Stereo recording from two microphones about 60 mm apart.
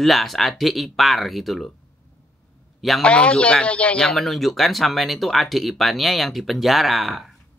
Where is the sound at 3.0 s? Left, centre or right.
Centre.